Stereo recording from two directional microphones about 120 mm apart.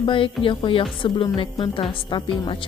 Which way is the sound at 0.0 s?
45° left (ahead or behind).